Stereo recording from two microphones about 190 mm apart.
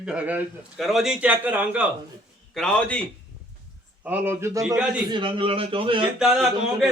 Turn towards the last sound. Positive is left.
turn(degrees=0)  # may be behind; listen again after turning